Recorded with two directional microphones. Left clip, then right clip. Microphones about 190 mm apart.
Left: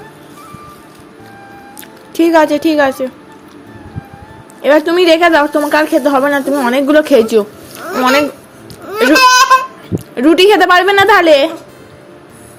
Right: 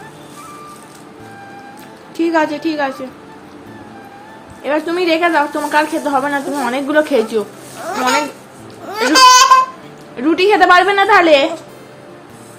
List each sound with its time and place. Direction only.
2.1 s a woman's voice: 45° left (ahead or behind)
4.6 s a woman's voice: 50° left (ahead or behind)
8.9 s laughter: 10° right (ahead or behind)
10.2 s a woman's voice: 45° left (ahead or behind)